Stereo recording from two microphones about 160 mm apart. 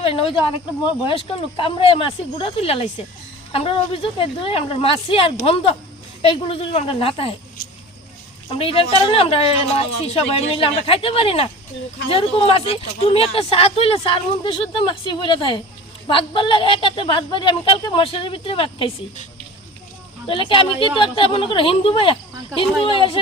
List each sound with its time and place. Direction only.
0.0 s a woman's voice: 35° left (ahead or behind)
8.4 s a woman's voice: 35° left (ahead or behind)
20.2 s a woman's voice: 35° left (ahead or behind)